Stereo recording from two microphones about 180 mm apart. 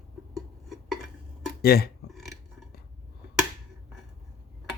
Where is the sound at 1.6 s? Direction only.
55° left (ahead or behind).